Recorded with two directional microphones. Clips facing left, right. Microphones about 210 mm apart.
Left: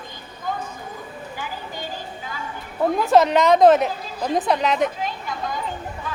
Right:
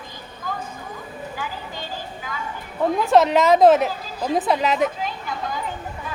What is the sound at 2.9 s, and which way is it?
A woman's voice, centre (ahead or behind).